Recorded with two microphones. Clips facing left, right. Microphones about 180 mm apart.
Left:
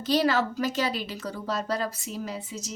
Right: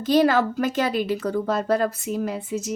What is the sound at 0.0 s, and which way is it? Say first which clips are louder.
A woman's voice: right 6 dB; 50° right (ahead or behind).